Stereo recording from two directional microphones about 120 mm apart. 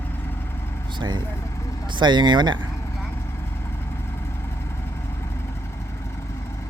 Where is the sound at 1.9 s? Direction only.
40° right (ahead or behind).